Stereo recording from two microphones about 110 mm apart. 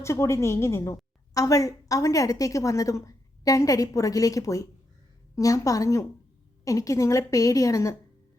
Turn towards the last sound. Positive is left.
turn(degrees=30)  # may be behind; listen again after turning